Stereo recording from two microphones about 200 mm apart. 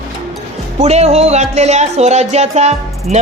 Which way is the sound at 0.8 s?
35° right (ahead or behind).